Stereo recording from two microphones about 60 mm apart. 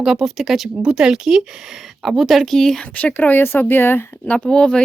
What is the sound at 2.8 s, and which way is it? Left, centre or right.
Speech, left.